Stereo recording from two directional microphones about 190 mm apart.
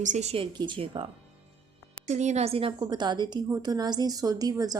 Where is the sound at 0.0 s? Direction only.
40° right (ahead or behind).